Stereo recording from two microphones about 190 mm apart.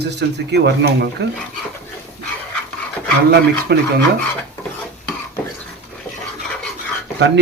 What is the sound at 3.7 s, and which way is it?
Speech, 60° right (ahead or behind).